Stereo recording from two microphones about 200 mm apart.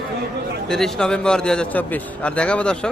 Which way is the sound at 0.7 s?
Centre (ahead or behind).